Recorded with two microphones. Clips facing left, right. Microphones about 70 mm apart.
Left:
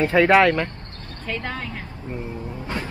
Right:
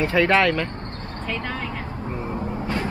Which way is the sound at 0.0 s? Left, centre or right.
Centre.